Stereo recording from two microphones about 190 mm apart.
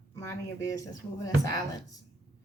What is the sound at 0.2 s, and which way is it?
A woman's voice, 15° left (ahead or behind).